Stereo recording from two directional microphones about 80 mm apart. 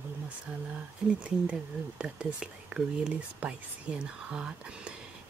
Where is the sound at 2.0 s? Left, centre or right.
Centre.